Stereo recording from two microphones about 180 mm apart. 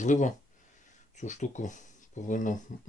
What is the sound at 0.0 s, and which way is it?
Speech, 45° left (ahead or behind).